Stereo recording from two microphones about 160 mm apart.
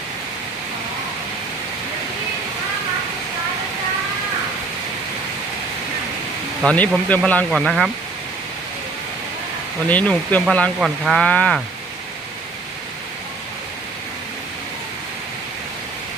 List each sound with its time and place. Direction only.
6.7 s speech: 5° left (ahead or behind)
9.9 s speech: 10° left (ahead or behind)